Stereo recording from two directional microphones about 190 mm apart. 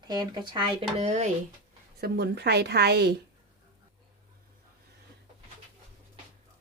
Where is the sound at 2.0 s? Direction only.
60° right (ahead or behind).